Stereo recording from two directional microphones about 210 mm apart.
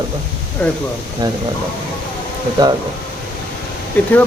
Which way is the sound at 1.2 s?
20° right (ahead or behind).